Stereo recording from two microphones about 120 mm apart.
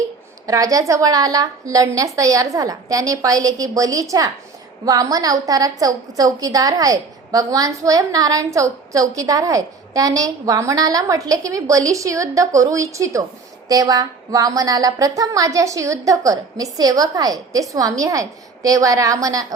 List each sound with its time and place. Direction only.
0.4 s a woman's voice: 30° right (ahead or behind)